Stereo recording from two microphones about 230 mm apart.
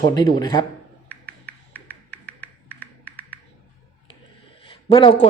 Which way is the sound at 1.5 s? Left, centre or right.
Centre.